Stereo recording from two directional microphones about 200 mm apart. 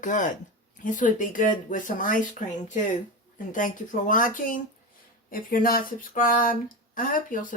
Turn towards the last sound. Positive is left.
turn(degrees=40)  # may be behind; listen again after turning